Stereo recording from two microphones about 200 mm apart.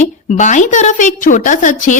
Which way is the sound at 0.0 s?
35° left (ahead or behind).